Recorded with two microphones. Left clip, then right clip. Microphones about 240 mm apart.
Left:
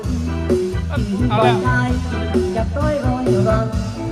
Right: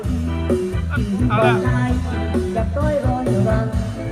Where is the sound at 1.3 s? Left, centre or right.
Centre.